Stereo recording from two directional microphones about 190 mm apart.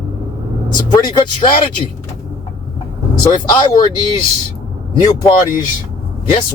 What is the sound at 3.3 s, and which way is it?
Speech, 25° left (ahead or behind).